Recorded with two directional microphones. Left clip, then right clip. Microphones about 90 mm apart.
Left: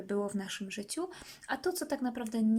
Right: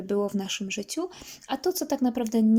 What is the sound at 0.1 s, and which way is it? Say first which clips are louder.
Speech: right 8 dB; 25° right (ahead or behind).